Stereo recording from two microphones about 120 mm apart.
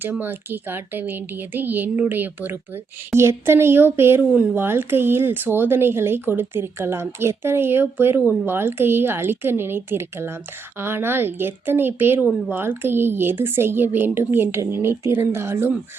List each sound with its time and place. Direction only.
0.0 s speech: 15° right (ahead or behind)
4.3 s speech: 10° right (ahead or behind)
4.5 s speech: 20° right (ahead or behind)